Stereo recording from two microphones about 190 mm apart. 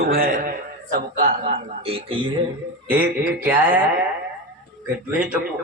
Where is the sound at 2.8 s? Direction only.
10° right (ahead or behind).